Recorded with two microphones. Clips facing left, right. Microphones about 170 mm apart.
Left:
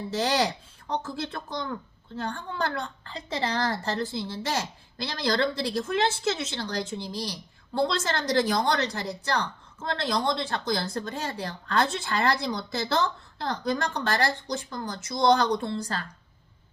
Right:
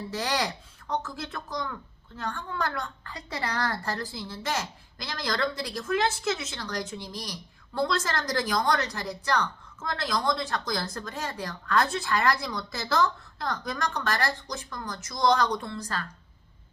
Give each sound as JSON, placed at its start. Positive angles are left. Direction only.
{"t": 0.1, "sound": "speech", "side_deg": 30}